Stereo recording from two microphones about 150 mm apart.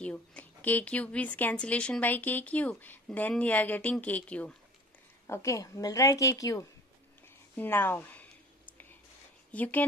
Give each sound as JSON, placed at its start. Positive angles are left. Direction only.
{"t": 0.0, "sound": "speech", "side_deg": 10}
{"t": 5.2, "sound": "a woman's voice", "side_deg": 20}
{"t": 7.2, "sound": "a sound", "side_deg": 15}
{"t": 9.5, "sound": "speech", "side_deg": 10}